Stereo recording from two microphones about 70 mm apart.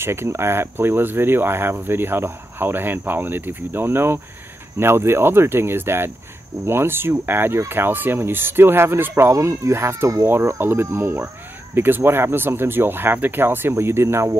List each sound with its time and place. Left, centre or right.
0.0 s speech: right